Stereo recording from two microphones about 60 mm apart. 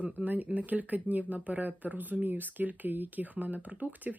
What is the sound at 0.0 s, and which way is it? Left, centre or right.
Speech, right.